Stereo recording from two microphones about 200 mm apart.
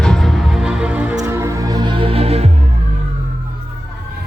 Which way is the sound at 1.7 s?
25° right (ahead or behind).